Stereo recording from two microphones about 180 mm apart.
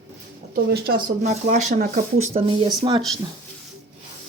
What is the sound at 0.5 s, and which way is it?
Speech, 60° right (ahead or behind).